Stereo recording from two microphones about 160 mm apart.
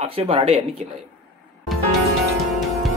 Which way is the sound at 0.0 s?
35° right (ahead or behind).